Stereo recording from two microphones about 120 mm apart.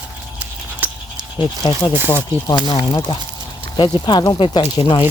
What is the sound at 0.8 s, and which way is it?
Dog, 15° right (ahead or behind).